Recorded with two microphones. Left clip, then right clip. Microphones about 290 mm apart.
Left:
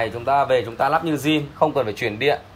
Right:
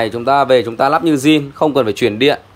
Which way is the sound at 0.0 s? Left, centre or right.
Centre.